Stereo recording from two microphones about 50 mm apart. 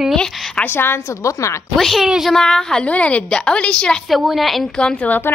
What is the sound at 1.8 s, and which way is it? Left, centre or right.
A woman's voice, centre.